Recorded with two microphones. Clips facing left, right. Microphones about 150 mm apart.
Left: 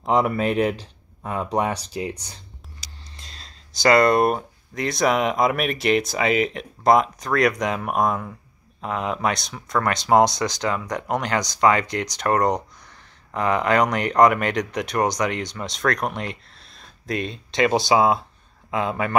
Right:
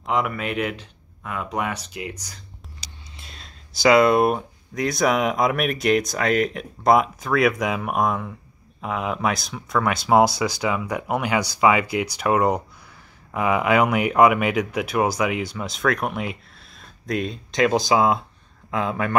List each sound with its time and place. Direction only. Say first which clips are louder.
0.0 s speech: left 4 dB; 35° left (ahead or behind)
2.8 s speech: even; 5° right (ahead or behind)